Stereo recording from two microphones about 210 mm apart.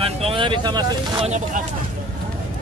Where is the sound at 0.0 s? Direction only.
25° right (ahead or behind).